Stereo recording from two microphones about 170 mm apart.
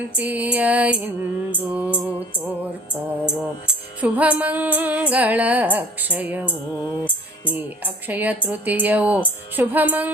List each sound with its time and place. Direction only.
0.2 s speech: 10° right (ahead or behind)
2.9 s music: 15° left (ahead or behind)
4.0 s speech: 10° right (ahead or behind)